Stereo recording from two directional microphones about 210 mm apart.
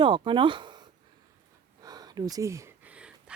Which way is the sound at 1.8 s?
20° right (ahead or behind).